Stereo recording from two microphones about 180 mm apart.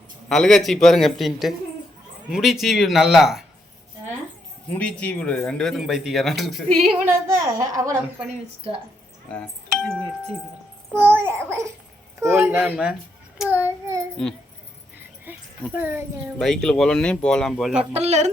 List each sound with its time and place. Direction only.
0.3 s speech: centre (ahead or behind)
4.7 s speech: 5° left (ahead or behind)
7.0 s a child's voice: 15° right (ahead or behind)
9.3 s speech: 5° left (ahead or behind)
10.9 s a child's voice: 10° right (ahead or behind)
15.7 s a child's voice: 10° right (ahead or behind)
16.4 s speech: 5° left (ahead or behind)
17.9 s speech: 35° right (ahead or behind)